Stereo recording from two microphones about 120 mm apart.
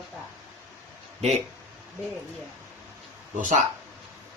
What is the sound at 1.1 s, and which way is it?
Speech, 60° right (ahead or behind).